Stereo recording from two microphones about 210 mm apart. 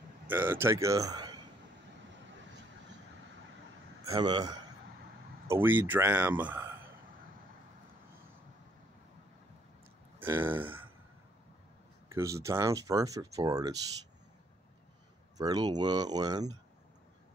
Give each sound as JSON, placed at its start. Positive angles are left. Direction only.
{"t": 0.3, "sound": "speech", "side_deg": -10}
{"t": 4.1, "sound": "speech", "side_deg": -20}
{"t": 5.5, "sound": "speech", "side_deg": -10}
{"t": 10.2, "sound": "speech", "side_deg": -10}
{"t": 12.1, "sound": "speech", "side_deg": -15}
{"t": 15.3, "sound": "speech", "side_deg": -20}